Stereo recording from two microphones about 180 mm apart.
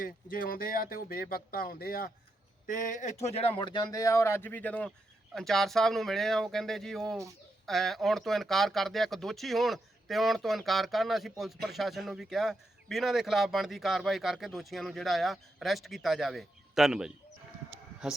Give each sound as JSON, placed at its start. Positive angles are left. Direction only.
{"t": 0.0, "sound": "speech", "side_deg": 50}
{"t": 2.6, "sound": "a man's voice", "side_deg": 45}